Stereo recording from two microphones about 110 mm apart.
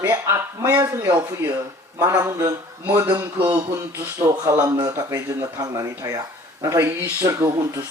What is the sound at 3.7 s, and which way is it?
A man's voice, 25° right (ahead or behind).